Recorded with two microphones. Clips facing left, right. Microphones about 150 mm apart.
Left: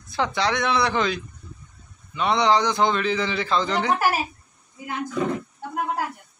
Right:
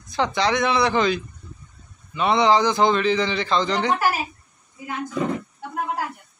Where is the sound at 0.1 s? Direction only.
Centre (ahead or behind).